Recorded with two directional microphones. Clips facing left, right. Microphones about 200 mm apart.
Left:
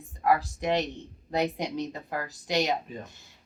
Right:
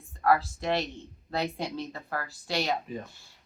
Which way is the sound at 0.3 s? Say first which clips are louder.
Even; 15° left (ahead or behind).